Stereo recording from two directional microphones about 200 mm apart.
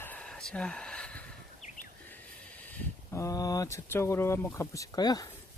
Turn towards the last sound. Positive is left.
turn(degrees=20)  # may be behind; listen again after turning